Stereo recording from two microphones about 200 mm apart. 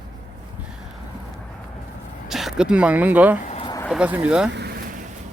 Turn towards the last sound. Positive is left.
turn(degrees=-5)  # may be behind; listen again after turning